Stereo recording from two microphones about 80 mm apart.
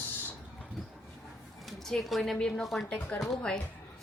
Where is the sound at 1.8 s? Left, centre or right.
Centre.